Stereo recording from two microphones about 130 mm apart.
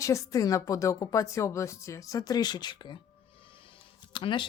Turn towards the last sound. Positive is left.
turn(degrees=40)  # may be behind; listen again after turning